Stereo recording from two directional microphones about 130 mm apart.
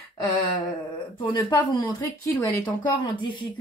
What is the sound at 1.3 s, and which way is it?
Speech, 35° left (ahead or behind).